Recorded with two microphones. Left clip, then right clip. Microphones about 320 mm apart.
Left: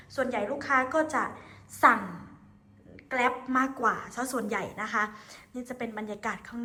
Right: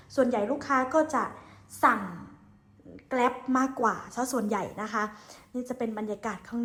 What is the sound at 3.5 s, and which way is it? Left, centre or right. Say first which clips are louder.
A woman's voice: even; centre.